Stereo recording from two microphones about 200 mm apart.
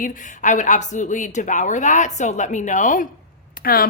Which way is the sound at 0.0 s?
40° left (ahead or behind).